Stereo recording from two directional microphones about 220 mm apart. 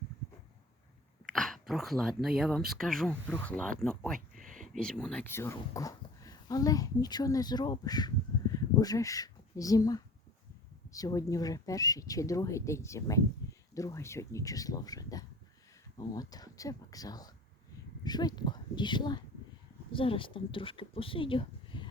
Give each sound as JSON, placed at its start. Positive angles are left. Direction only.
{"t": 1.3, "sound": "speech", "side_deg": 0}
{"t": 4.4, "sound": "a sound", "side_deg": -35}
{"t": 4.7, "sound": "speech", "side_deg": 5}